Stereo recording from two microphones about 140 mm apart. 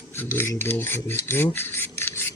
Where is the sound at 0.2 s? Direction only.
15° left (ahead or behind).